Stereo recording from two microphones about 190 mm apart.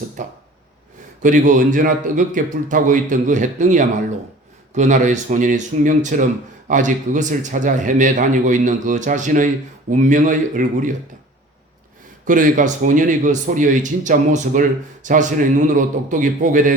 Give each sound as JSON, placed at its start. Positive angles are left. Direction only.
{"t": 0.2, "sound": "a man's voice", "side_deg": -40}
{"t": 12.2, "sound": "a man's voice", "side_deg": -45}